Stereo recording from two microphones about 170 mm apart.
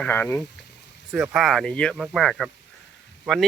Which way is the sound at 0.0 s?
10° left (ahead or behind).